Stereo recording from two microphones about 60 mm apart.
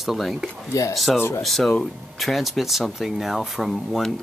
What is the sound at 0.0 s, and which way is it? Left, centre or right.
Speech, centre.